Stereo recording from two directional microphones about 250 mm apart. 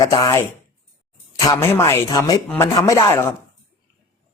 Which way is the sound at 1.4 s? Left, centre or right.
Centre.